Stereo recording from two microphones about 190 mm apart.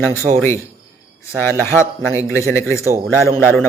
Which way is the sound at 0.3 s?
35° right (ahead or behind).